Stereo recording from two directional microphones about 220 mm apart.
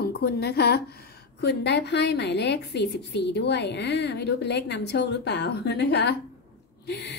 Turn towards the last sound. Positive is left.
turn(degrees=50)  # may be behind; listen again after turning